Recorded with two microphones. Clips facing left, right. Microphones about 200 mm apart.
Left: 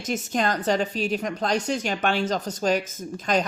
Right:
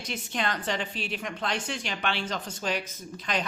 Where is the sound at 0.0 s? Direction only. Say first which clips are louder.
Left 7 dB; 45° left (ahead or behind).